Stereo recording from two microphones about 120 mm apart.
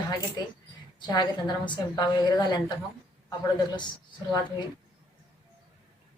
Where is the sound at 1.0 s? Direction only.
35° left (ahead or behind).